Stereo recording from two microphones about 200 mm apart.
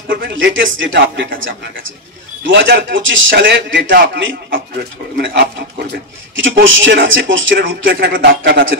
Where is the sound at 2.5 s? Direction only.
60° right (ahead or behind).